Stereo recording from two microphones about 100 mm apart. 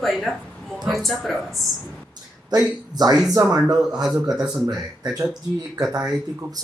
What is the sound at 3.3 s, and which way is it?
Speech, 35° right (ahead or behind).